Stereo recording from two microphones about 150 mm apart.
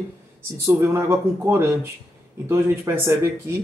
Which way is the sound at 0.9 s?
15° right (ahead or behind).